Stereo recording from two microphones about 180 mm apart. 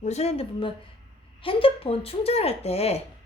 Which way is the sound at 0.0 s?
35° left (ahead or behind).